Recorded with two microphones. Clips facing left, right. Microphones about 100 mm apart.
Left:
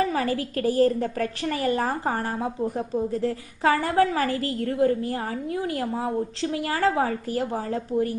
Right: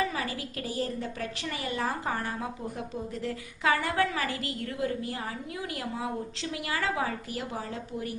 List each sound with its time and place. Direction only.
0.0 s a woman's voice: 40° left (ahead or behind)